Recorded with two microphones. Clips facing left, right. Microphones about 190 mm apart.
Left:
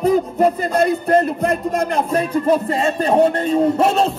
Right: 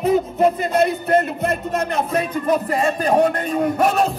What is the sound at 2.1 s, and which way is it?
Music, 30° left (ahead or behind).